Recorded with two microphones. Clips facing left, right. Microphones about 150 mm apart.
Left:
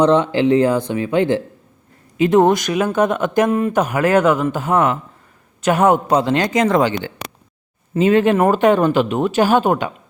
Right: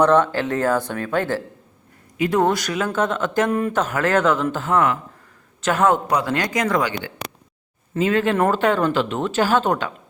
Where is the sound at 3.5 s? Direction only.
5° left (ahead or behind).